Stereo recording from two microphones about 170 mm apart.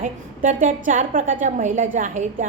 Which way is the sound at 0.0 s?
50° right (ahead or behind).